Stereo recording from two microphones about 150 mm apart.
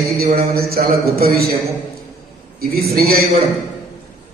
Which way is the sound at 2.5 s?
90° right.